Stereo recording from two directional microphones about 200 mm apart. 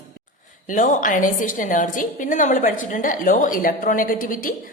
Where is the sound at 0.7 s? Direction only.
40° left (ahead or behind).